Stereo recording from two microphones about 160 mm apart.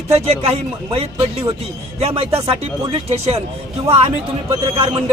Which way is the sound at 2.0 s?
40° right (ahead or behind).